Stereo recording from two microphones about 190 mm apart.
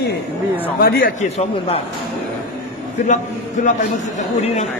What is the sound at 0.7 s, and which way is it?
A man's voice, 50° left (ahead or behind).